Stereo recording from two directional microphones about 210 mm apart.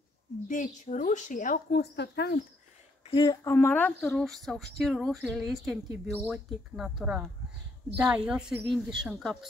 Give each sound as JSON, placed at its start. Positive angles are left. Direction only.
{"t": 0.5, "sound": "speech", "side_deg": 35}
{"t": 3.1, "sound": "speech", "side_deg": 20}
{"t": 3.4, "sound": "speech", "side_deg": 10}